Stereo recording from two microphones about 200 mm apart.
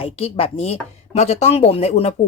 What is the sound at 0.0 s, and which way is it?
Speech, 30° left (ahead or behind).